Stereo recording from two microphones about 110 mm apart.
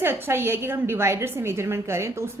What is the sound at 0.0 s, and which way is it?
A woman's voice, 20° right (ahead or behind).